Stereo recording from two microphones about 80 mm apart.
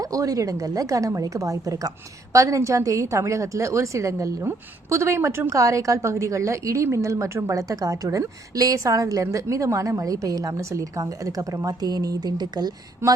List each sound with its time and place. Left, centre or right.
0.0 s a woman's voice: right